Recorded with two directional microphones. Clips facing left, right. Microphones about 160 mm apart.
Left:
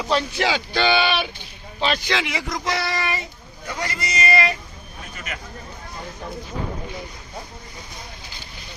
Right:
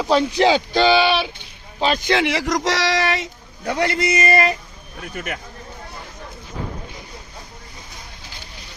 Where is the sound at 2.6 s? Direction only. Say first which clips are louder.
Right 2 dB; 90° right.